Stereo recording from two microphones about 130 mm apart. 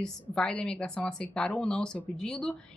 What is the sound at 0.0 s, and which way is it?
A woman's voice, 5° left (ahead or behind).